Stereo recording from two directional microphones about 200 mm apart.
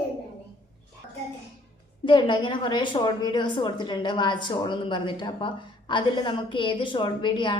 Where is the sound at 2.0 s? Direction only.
25° left (ahead or behind).